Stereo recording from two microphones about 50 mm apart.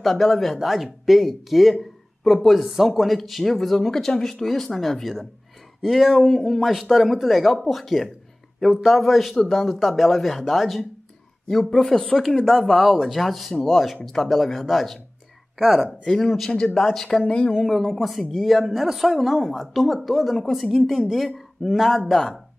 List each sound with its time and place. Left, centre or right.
0.0 s speech: centre
11.7 s speech: centre
16.0 s speech: centre
16.3 s speech: centre
16.5 s speech: centre
17.3 s speech: centre
17.6 s speech: centre